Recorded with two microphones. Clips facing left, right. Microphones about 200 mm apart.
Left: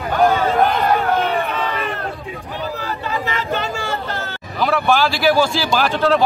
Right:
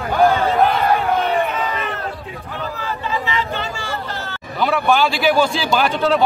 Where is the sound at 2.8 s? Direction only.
45° left (ahead or behind).